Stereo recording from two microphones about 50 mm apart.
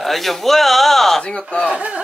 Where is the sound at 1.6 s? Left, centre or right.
Right.